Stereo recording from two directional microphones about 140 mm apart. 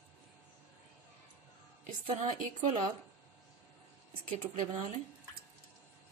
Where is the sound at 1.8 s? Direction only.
70° right (ahead or behind).